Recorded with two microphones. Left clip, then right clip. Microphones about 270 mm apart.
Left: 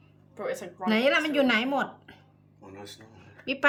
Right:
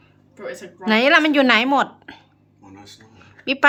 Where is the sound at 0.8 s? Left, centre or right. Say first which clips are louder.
Right 9 dB; centre.